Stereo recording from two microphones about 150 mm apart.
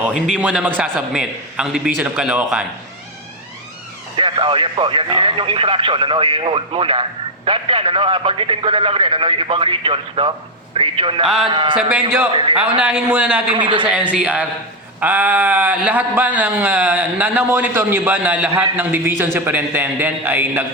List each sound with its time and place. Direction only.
0.0 s a man's voice: 5° right (ahead or behind)
4.2 s speech: 35° right (ahead or behind)
11.8 s speech: 10° right (ahead or behind)
12.3 s speech: 35° right (ahead or behind)
12.8 s speech: 10° right (ahead or behind)
13.5 s speech: 30° right (ahead or behind)
13.8 s speech: 5° right (ahead or behind)